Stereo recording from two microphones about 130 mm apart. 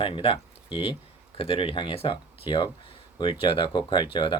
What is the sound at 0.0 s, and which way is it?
Speech, 45° left (ahead or behind).